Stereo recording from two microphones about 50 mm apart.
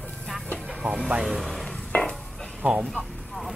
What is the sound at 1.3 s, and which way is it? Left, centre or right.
Speech, centre.